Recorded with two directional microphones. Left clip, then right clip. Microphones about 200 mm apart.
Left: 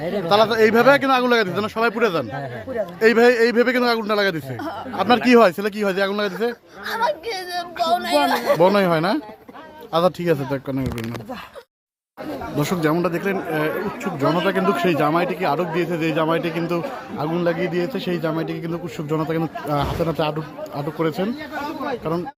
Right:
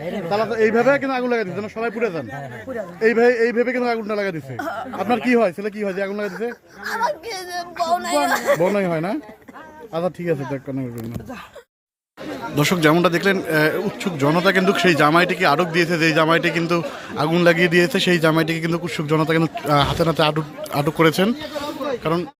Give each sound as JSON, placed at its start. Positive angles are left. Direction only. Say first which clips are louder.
{"t": 0.3, "sound": "speech", "louder": "left 3 dB", "side_deg": 15}
{"t": 4.5, "sound": "speech", "louder": "right 2 dB", "side_deg": -40}
{"t": 5.0, "sound": "speech", "louder": "left 4 dB", "side_deg": 10}
{"t": 12.5, "sound": "a man's voice", "louder": "right 5 dB", "side_deg": -5}